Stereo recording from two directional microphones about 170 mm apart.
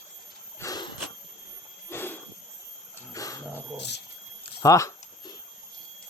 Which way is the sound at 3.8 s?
85° left.